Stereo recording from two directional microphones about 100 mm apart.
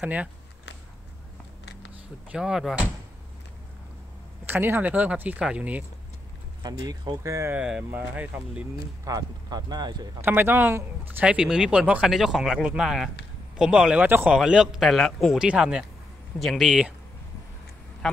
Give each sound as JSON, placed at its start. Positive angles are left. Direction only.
{"t": 0.0, "sound": "speech", "side_deg": -15}
{"t": 2.2, "sound": "speech", "side_deg": -5}
{"t": 4.5, "sound": "speech", "side_deg": -20}
{"t": 6.6, "sound": "speech", "side_deg": -40}
{"t": 7.5, "sound": "speech", "side_deg": -10}
{"t": 9.0, "sound": "speech", "side_deg": -40}
{"t": 10.2, "sound": "speech", "side_deg": -20}
{"t": 14.0, "sound": "speech", "side_deg": -20}
{"t": 14.3, "sound": "speech", "side_deg": -5}
{"t": 18.0, "sound": "speech", "side_deg": 5}